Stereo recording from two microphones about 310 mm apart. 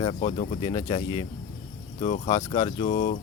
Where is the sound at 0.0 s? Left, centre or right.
Centre.